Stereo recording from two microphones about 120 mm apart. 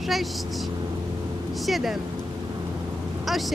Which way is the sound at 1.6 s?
Centre (ahead or behind).